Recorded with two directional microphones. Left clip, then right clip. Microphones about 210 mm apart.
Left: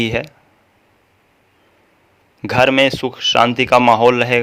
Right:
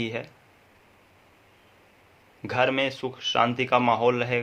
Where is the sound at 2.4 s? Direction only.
50° left (ahead or behind).